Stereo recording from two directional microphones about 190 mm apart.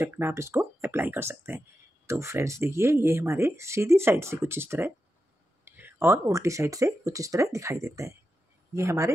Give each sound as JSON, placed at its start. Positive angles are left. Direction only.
{"t": 0.0, "sound": "speech", "side_deg": -10}